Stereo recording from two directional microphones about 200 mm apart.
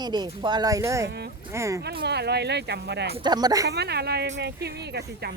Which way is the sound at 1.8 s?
55° right (ahead or behind).